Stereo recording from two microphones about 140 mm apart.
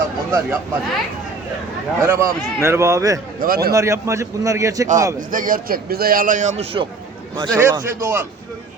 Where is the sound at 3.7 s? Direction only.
20° right (ahead or behind).